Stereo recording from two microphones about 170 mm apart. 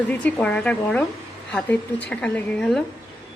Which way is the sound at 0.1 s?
10° left (ahead or behind).